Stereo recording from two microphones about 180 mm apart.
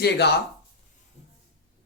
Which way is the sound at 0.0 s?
65° left (ahead or behind).